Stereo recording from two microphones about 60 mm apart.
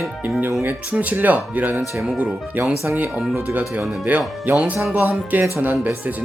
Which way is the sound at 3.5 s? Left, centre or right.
Right.